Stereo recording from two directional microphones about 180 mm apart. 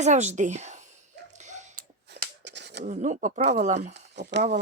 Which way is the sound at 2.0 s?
75° right (ahead or behind).